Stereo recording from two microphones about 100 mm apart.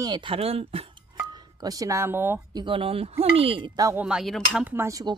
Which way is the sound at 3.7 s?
40° right (ahead or behind).